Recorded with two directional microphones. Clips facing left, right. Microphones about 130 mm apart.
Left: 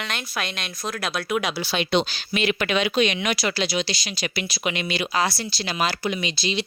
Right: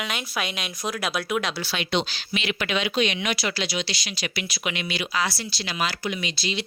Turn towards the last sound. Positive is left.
turn(degrees=25)  # may be behind; listen again after turning